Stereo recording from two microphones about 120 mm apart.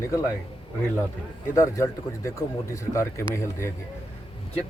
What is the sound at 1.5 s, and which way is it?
Speech, 25° left (ahead or behind).